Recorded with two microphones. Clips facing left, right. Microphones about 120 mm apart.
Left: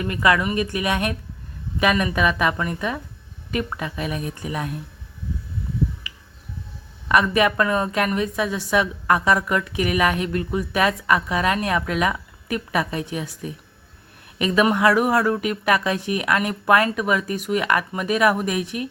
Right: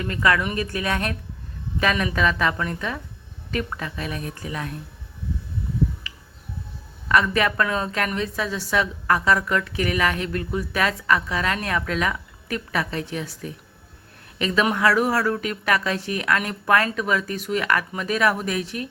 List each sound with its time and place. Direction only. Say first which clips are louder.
0.0 s a woman's voice: left 2 dB; 15° left (ahead or behind)
7.1 s a woman's voice: left 2 dB; 15° left (ahead or behind)